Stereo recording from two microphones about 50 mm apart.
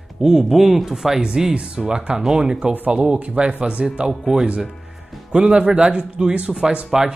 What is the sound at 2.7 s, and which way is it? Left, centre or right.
Speech, right.